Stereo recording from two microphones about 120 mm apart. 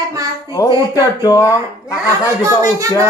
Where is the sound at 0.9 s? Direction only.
30° left (ahead or behind).